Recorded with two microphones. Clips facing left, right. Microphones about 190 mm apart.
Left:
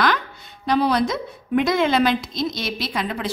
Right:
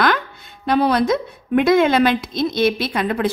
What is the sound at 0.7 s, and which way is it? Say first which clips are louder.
A woman's voice: right 3 dB; 55° right (ahead or behind).